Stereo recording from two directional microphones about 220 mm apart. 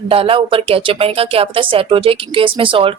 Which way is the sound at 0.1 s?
25° right (ahead or behind).